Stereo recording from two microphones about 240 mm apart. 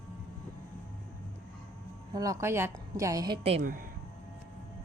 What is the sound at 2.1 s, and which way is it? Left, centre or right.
A woman's voice, centre.